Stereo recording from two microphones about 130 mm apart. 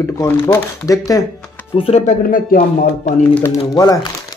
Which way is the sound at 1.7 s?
45° left (ahead or behind).